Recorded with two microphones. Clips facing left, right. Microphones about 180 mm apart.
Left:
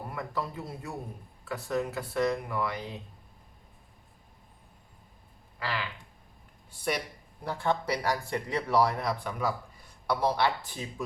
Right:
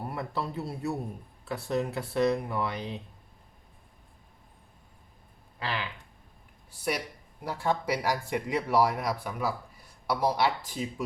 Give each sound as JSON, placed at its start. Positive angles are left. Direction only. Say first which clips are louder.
{"t": 0.1, "sound": "speech", "louder": "left 1 dB", "side_deg": -25}
{"t": 5.5, "sound": "speech", "louder": "even", "side_deg": -20}
{"t": 6.7, "sound": "speech", "louder": "even", "side_deg": -5}